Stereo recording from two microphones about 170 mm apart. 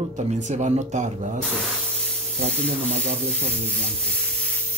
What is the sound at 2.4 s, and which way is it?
Speech, 40° right (ahead or behind).